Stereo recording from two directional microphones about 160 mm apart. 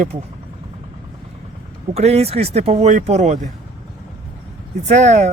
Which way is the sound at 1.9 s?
40° right (ahead or behind).